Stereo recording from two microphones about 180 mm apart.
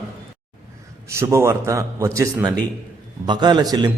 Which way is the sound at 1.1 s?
15° right (ahead or behind).